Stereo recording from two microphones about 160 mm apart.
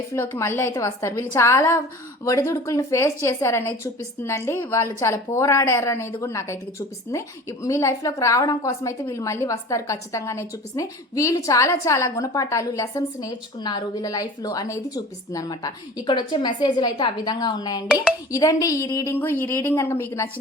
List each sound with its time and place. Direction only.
0.1 s a woman's voice: 15° left (ahead or behind)